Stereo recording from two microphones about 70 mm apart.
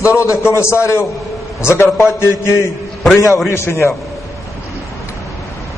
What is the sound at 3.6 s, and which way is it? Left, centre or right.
Speech, left.